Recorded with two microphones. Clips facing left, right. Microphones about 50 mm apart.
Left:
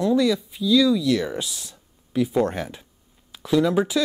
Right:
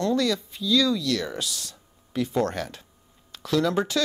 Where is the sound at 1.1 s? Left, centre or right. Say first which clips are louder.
Left 5 dB; centre.